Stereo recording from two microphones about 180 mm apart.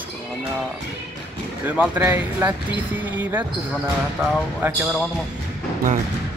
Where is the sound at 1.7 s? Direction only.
10° right (ahead or behind).